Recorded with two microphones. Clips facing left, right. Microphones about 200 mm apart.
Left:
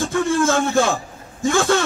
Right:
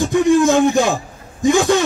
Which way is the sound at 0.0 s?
15° right (ahead or behind).